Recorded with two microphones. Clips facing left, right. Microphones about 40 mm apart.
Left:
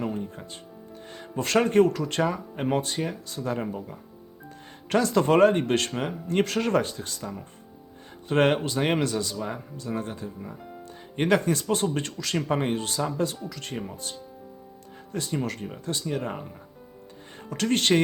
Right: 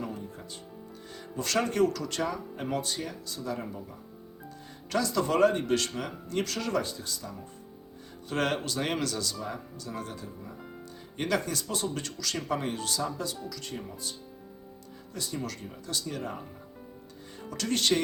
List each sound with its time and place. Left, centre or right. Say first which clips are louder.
0.0 s music: left 6 dB; left
1.1 s speech: left 5 dB; left
8.3 s speech: left 7 dB; left
17.5 s speech: left 5 dB; left